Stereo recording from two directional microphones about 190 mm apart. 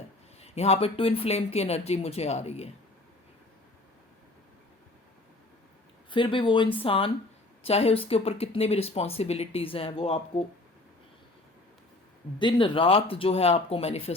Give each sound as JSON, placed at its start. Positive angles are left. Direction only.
{"t": 0.3, "sound": "speech", "side_deg": 35}
{"t": 6.1, "sound": "speech", "side_deg": 25}
{"t": 12.4, "sound": "speech", "side_deg": 25}